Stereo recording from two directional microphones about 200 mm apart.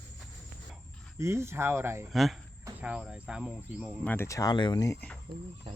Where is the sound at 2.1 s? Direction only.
Centre (ahead or behind).